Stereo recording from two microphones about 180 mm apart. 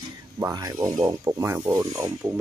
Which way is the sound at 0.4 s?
20° right (ahead or behind).